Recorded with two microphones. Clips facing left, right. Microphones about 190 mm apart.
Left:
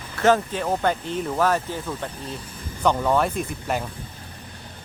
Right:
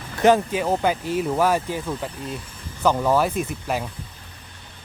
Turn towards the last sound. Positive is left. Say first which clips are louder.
# right 1 dB
turn(degrees=0)  # may be behind; listen again after turning